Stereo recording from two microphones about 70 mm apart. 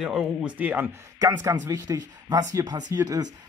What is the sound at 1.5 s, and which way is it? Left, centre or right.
Speech, right.